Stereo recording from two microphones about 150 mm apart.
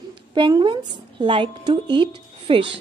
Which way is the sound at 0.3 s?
30° right (ahead or behind).